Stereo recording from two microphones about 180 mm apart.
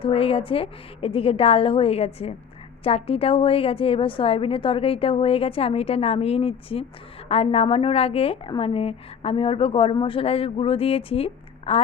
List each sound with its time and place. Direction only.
0.0 s a woman's voice: 30° left (ahead or behind)